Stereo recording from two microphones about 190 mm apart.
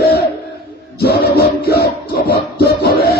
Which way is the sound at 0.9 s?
55° left (ahead or behind).